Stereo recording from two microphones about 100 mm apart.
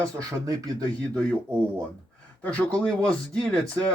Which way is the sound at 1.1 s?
10° left (ahead or behind).